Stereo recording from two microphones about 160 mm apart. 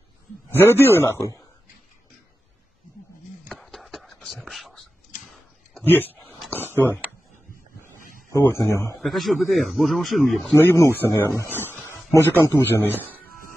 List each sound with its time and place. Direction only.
0.6 s a man's voice: 15° left (ahead or behind)
3.4 s chopping: centre (ahead or behind)
5.8 s speech: 10° left (ahead or behind)
6.5 s a sound: 15° left (ahead or behind)
8.3 s a man's voice: 15° left (ahead or behind)
9.0 s speech: centre (ahead or behind)
10.6 s a man's voice: 15° left (ahead or behind)
11.7 s a sound: 15° left (ahead or behind)
12.5 s a man's voice: 15° left (ahead or behind)